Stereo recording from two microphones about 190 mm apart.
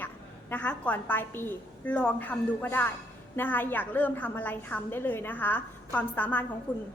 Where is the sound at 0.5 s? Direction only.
10° left (ahead or behind).